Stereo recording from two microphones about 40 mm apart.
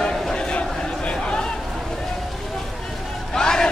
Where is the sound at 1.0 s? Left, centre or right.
Left.